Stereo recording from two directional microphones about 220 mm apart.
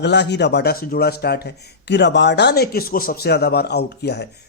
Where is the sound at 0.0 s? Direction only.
50° left (ahead or behind).